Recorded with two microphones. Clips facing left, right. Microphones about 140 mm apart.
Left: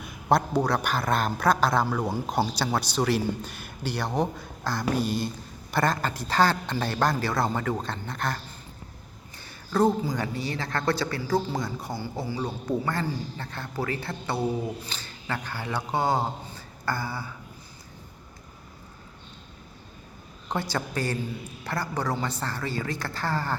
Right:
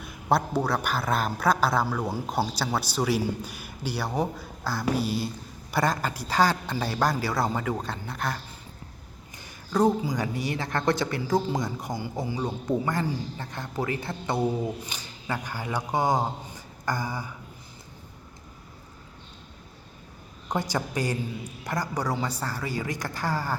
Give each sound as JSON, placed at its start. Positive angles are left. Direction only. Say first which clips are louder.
{"t": 0.0, "sound": "a man's voice", "louder": "left 1 dB", "side_deg": -5}
{"t": 9.7, "sound": "a man's voice", "louder": "even", "side_deg": -15}
{"t": 20.5, "sound": "speech", "louder": "right 1 dB", "side_deg": -15}